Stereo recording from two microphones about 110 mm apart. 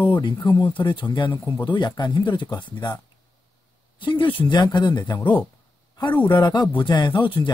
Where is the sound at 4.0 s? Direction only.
50° left (ahead or behind).